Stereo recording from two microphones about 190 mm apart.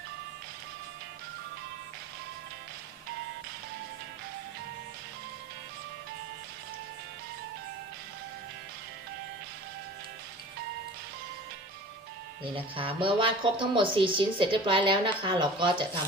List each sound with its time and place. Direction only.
12.5 s a woman's voice: 30° right (ahead or behind)